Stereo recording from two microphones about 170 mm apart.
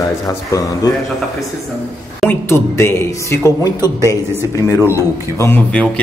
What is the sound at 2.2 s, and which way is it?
Speech, 15° left (ahead or behind).